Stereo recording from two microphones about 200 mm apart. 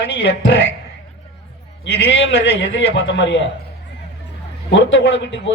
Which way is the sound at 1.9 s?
65° left (ahead or behind).